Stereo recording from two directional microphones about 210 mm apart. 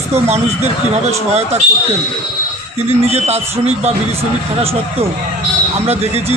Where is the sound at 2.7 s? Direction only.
30° right (ahead or behind).